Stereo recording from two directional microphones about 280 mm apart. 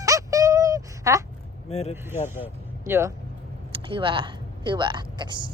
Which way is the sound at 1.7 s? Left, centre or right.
Left.